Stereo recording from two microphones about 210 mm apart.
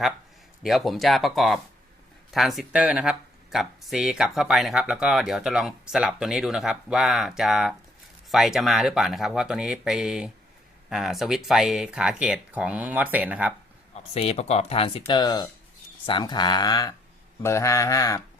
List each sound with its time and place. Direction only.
0.6 s speech: centre (ahead or behind)
14.1 s speech: 30° left (ahead or behind)